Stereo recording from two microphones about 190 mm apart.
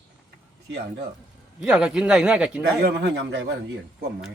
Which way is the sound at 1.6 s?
5° right (ahead or behind).